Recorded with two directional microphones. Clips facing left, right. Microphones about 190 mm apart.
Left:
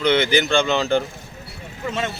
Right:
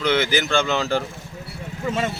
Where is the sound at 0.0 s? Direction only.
5° right (ahead or behind).